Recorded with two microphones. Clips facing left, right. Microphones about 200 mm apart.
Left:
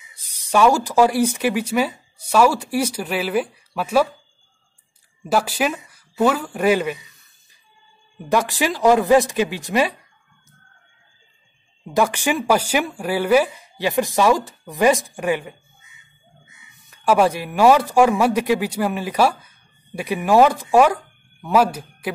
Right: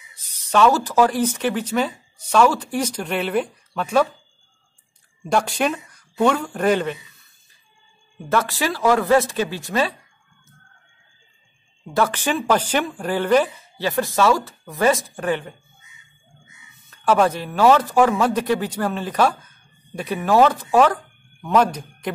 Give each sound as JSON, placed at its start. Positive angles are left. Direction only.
{"t": 0.1, "sound": "speech", "side_deg": 10}
{"t": 5.2, "sound": "a man's voice", "side_deg": 5}
{"t": 8.3, "sound": "a man's voice", "side_deg": 15}
{"t": 11.9, "sound": "a man's voice", "side_deg": 15}
{"t": 16.9, "sound": "a man's voice", "side_deg": 10}